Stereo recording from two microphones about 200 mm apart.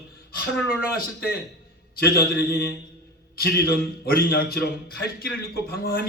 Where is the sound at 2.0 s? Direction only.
50° left (ahead or behind).